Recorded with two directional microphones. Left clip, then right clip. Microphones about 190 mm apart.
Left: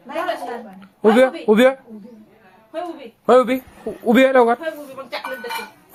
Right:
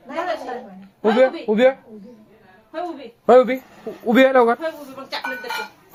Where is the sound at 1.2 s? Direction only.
30° left (ahead or behind).